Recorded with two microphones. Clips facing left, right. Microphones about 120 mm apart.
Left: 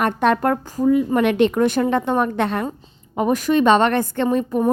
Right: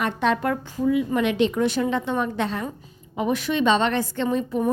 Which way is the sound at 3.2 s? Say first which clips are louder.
Left 5 dB; 45° left (ahead or behind).